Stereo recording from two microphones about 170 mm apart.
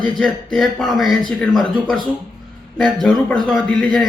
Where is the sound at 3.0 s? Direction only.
5° left (ahead or behind).